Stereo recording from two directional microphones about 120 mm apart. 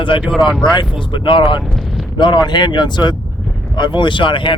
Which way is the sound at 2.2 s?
40° left (ahead or behind).